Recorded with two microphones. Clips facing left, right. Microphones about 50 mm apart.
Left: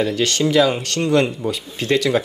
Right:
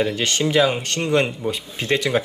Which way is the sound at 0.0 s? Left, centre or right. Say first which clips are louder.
Left 2 dB; right.